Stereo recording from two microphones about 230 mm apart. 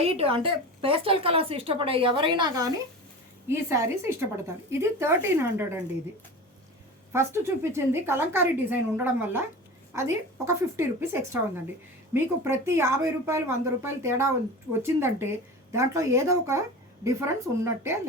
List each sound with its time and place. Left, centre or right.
0.0 s a woman's voice: right
7.1 s speech: centre